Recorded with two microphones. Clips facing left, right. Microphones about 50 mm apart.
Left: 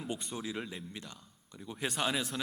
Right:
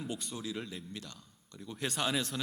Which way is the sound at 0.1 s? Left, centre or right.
Left.